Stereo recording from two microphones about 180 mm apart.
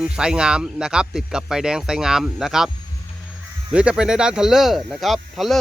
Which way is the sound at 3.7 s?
5° right (ahead or behind).